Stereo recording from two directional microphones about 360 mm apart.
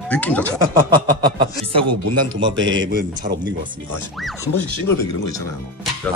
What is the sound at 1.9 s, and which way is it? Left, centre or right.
Speech, right.